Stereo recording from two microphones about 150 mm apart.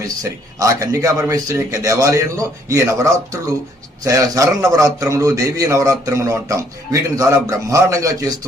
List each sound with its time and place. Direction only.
0.0 s a man's voice: 20° right (ahead or behind)